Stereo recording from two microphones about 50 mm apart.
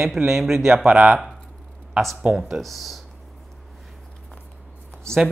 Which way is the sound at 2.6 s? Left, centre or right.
Centre.